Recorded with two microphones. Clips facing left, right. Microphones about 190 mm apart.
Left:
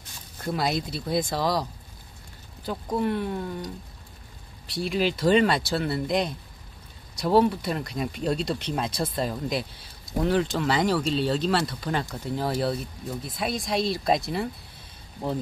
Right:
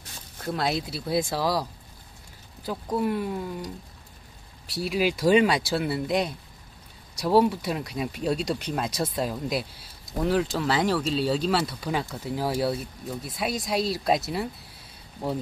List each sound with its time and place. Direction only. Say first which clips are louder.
0.4 s speech: left 1 dB; centre (ahead or behind)